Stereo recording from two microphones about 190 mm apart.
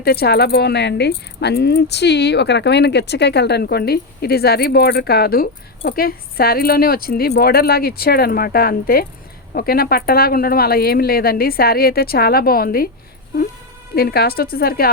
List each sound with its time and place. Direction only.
0.0 s speech: 55° left (ahead or behind)
13.9 s speech: 55° left (ahead or behind)